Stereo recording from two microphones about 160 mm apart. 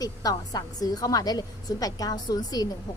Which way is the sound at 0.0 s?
25° left (ahead or behind).